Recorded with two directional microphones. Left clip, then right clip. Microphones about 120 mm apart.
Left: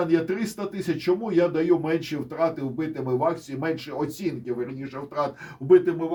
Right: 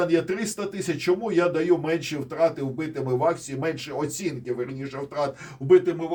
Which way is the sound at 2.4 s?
20° right (ahead or behind).